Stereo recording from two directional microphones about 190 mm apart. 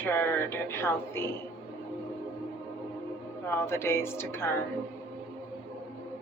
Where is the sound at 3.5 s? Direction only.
15° left (ahead or behind).